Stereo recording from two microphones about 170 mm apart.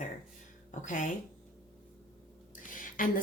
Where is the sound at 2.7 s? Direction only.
55° left (ahead or behind).